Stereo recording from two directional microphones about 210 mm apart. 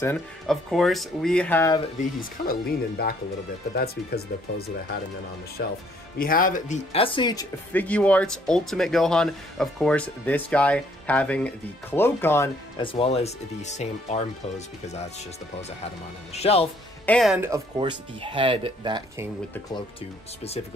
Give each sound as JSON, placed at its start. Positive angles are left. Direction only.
{"t": 0.0, "sound": "speech", "side_deg": 5}
{"t": 2.4, "sound": "speech", "side_deg": 45}
{"t": 7.7, "sound": "speech", "side_deg": 5}
{"t": 12.8, "sound": "speech", "side_deg": 25}
{"t": 16.3, "sound": "speech", "side_deg": 30}
{"t": 17.0, "sound": "speech", "side_deg": 5}
{"t": 17.7, "sound": "speech", "side_deg": -25}